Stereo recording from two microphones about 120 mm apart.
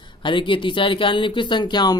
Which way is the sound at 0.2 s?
40° left (ahead or behind).